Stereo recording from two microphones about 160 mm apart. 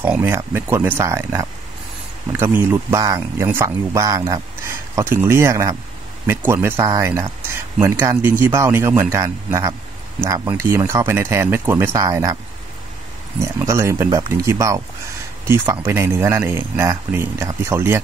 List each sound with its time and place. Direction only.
0.0 s speech: 15° right (ahead or behind)
7.5 s a sound: 15° right (ahead or behind)
8.2 s speech: 15° right (ahead or behind)
13.4 s speech: 15° right (ahead or behind)